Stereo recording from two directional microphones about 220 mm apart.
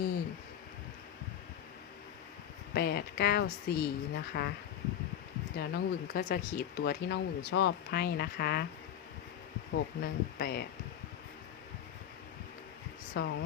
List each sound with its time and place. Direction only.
2.7 s speech: 45° left (ahead or behind)
5.5 s speech: 45° left (ahead or behind)
9.7 s speech: 45° left (ahead or behind)
13.2 s speech: 45° left (ahead or behind)